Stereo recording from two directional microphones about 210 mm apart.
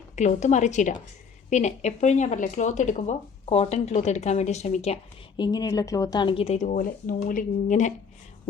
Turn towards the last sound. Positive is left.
turn(degrees=35)  # may be behind; listen again after turning